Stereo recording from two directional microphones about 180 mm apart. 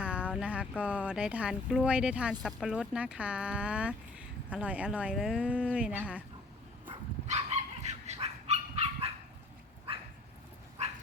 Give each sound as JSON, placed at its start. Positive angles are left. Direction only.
{"t": 0.0, "sound": "speech", "side_deg": -5}
{"t": 7.3, "sound": "dog", "side_deg": -40}